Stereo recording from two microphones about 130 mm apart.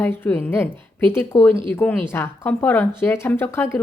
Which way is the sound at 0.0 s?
15° left (ahead or behind).